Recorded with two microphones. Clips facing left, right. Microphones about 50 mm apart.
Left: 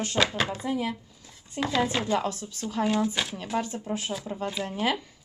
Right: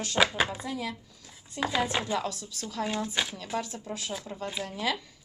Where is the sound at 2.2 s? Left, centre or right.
Left.